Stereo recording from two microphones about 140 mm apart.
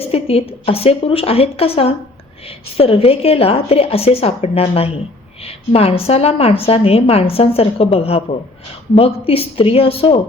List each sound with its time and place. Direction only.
0.0 s a woman's voice: 45° left (ahead or behind)